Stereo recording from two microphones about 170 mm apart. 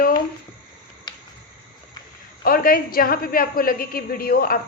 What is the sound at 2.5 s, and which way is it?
A man's voice, 60° left (ahead or behind).